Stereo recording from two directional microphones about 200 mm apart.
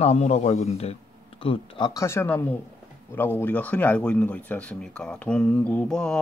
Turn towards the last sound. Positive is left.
turn(degrees=5)  # may be behind; listen again after turning